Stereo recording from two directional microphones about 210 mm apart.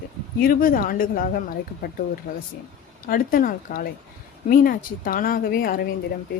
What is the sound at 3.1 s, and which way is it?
Speech, 40° left (ahead or behind).